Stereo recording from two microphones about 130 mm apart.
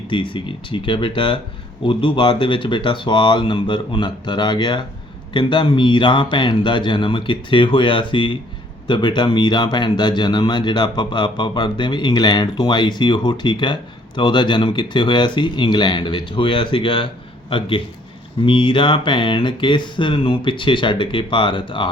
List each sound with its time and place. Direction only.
0.1 s speech: 40° left (ahead or behind)